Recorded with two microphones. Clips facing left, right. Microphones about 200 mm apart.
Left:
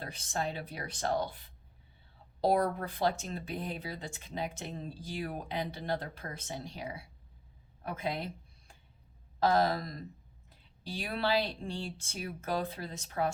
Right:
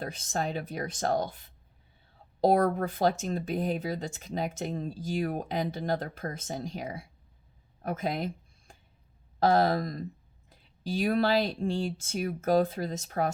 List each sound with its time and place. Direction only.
0.0 s speech: 45° right (ahead or behind)
2.4 s speech: 45° right (ahead or behind)
7.8 s a sound: 45° right (ahead or behind)
9.5 s speech: 40° right (ahead or behind)